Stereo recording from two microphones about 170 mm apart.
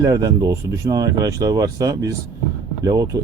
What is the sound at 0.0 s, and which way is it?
Speech, 20° right (ahead or behind).